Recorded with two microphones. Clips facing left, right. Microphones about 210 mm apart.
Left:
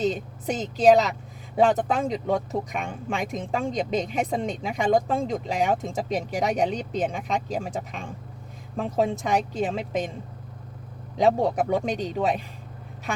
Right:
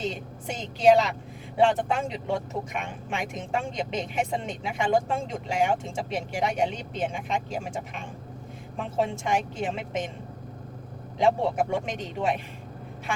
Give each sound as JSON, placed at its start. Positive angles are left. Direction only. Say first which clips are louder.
{"t": 0.0, "sound": "speech", "louder": "left 6 dB", "side_deg": 35}
{"t": 11.2, "sound": "speech", "louder": "left 2 dB", "side_deg": 35}